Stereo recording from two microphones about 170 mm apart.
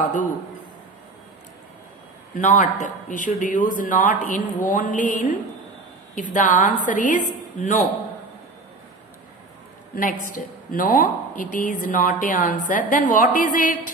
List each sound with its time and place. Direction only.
2.3 s a woman's voice: 45° left (ahead or behind)
10.7 s a woman's voice: 55° left (ahead or behind)